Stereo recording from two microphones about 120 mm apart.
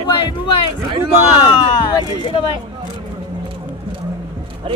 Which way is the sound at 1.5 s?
40° left (ahead or behind).